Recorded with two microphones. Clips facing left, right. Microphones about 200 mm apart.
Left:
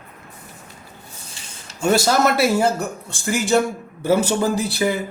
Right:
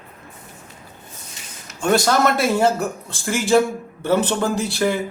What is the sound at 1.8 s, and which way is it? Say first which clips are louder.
Speech: even; 5° left (ahead or behind).